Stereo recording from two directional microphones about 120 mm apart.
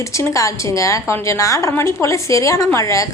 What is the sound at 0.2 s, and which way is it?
A woman's voice, 25° left (ahead or behind).